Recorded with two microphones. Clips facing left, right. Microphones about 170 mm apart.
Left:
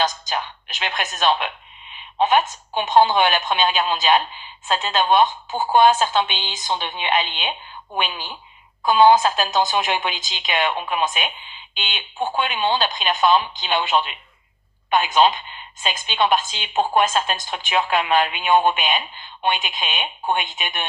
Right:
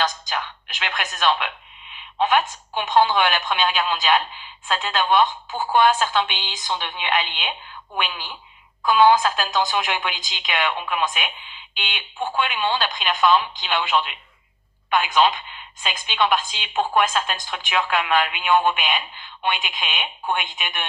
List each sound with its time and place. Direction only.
0.0 s music: 25° left (ahead or behind)
2.2 s a woman's voice: 25° left (ahead or behind)